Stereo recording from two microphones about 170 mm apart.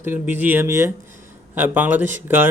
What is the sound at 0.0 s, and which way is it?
Speech, 10° right (ahead or behind).